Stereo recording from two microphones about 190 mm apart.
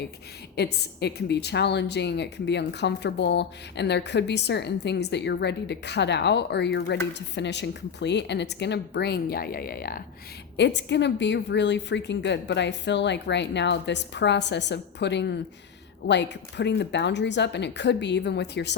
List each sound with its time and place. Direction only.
0.5 s a woman's voice: 60° left (ahead or behind)
10.6 s a woman's voice: 65° left (ahead or behind)